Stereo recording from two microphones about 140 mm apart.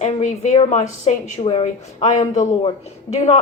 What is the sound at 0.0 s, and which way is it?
Speech, 60° left (ahead or behind).